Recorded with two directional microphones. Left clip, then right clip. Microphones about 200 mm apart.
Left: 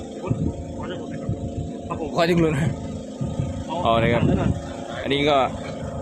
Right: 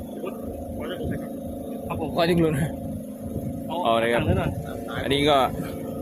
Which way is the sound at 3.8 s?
10° left (ahead or behind).